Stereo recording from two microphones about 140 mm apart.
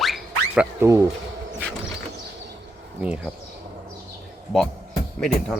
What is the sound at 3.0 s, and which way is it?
Speech, 5° right (ahead or behind).